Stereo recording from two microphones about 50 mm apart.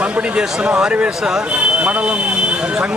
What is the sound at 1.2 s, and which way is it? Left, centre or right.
Speech, centre.